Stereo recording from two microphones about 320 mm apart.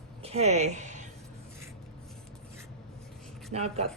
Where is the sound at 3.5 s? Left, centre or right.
Centre.